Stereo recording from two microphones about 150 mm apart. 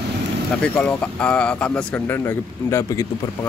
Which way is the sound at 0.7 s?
5° left (ahead or behind).